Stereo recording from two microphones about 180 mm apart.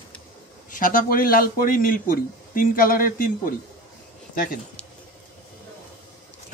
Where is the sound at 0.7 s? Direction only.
50° left (ahead or behind).